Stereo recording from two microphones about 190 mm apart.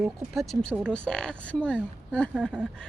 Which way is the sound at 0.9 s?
5° left (ahead or behind).